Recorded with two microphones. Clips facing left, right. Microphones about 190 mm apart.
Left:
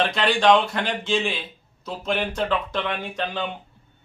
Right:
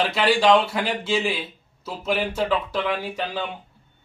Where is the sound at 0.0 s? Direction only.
5° right (ahead or behind).